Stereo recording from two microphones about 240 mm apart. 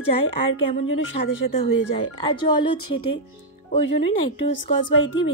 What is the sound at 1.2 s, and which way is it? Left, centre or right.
Speech, left.